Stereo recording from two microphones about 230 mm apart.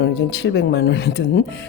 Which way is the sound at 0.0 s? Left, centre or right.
Left.